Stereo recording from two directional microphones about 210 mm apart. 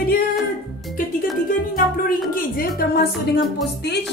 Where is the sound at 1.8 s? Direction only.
45° left (ahead or behind).